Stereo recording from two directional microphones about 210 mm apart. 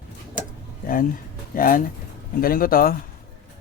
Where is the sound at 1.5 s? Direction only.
40° left (ahead or behind).